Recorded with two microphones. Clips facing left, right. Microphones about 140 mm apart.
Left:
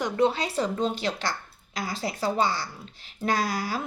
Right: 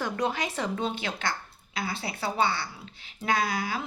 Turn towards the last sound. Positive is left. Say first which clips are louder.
# left 1 dB
turn(degrees=45)  # may be behind; listen again after turning